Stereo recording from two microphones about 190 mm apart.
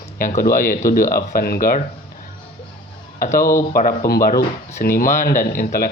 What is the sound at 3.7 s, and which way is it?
Speech, 50° left (ahead or behind).